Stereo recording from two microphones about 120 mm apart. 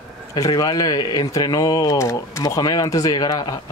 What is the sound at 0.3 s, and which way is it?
Speech, 35° left (ahead or behind).